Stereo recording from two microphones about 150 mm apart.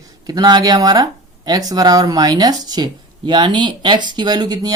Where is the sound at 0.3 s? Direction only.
25° right (ahead or behind).